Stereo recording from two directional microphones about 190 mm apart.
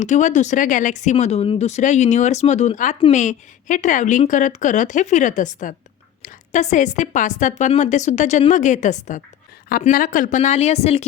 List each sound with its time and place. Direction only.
0.0 s speech: 40° left (ahead or behind)